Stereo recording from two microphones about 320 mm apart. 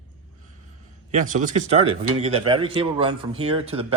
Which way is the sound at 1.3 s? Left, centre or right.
Right.